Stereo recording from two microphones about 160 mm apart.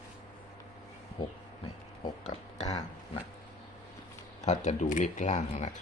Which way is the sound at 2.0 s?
40° left (ahead or behind).